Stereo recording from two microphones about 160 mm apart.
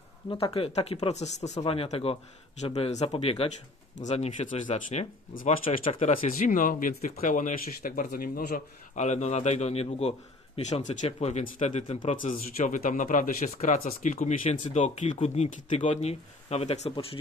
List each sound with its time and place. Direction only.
0.3 s speech: 35° left (ahead or behind); by 5.5 s 55° left (ahead or behind)
5.7 s speech: 40° left (ahead or behind)